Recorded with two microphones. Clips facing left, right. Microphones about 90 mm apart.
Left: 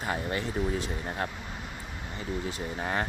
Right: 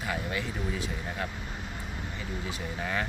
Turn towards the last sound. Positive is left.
turn(degrees=35)  # may be behind; listen again after turning